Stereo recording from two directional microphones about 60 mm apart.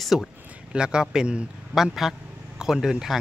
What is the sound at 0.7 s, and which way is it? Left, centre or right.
A man's voice, centre.